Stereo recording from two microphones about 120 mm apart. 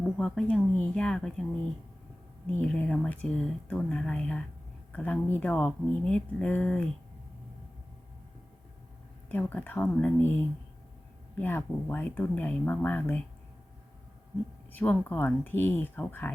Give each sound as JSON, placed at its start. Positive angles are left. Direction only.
{"t": 0.2, "sound": "speech", "side_deg": 5}
{"t": 2.6, "sound": "speech", "side_deg": 10}
{"t": 9.3, "sound": "speech", "side_deg": 15}
{"t": 14.7, "sound": "speech", "side_deg": 15}